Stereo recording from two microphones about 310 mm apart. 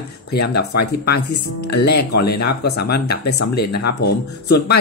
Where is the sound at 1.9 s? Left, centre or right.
Left.